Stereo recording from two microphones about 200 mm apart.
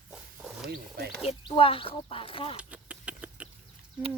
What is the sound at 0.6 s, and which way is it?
Speech, 55° right (ahead or behind).